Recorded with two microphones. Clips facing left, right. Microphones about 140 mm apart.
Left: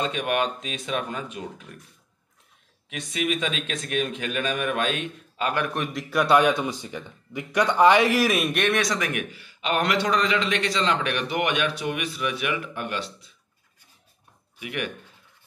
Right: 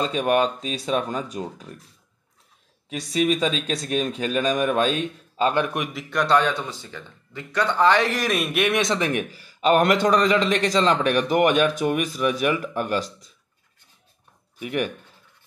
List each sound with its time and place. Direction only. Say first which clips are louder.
0.0 s a man's voice: right 4 dB; 35° right (ahead or behind)
2.9 s a man's voice: right 5 dB; 35° right (ahead or behind)
6.0 s speech: left 1 dB; 10° left (ahead or behind)
8.7 s a man's voice: right 3 dB; 25° right (ahead or behind)
14.6 s a man's voice: right 6 dB; 35° right (ahead or behind)